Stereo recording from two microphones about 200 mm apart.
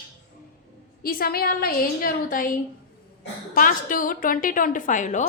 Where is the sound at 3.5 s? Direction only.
45° left (ahead or behind).